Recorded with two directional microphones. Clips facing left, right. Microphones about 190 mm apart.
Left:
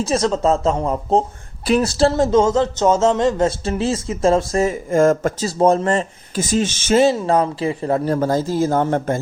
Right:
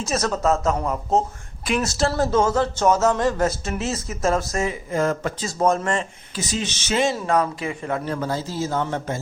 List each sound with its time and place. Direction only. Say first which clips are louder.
0.0 s a man's voice: left 5 dB; 25° left (ahead or behind); by 5.5 s 45° left (ahead or behind)
5.5 s speech: left 5 dB; 30° left (ahead or behind); by 7.0 s 50° left (ahead or behind)
7.0 s speech: left 3 dB; 30° left (ahead or behind); by 9.2 s 50° left (ahead or behind)